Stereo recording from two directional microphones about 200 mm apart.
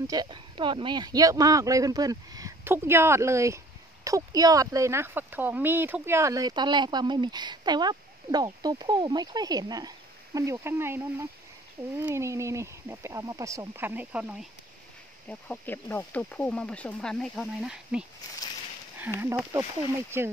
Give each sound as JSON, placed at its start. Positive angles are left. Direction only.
{"t": 0.0, "sound": "speech", "side_deg": -20}
{"t": 15.2, "sound": "speech", "side_deg": 5}